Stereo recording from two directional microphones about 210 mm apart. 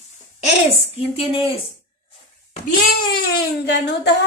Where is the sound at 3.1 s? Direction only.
50° left (ahead or behind).